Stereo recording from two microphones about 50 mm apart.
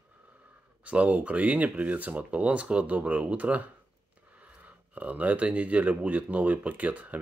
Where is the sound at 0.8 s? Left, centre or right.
Right.